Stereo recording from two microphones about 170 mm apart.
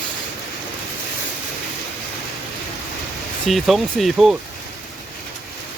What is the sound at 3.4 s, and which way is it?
Speech, centre (ahead or behind).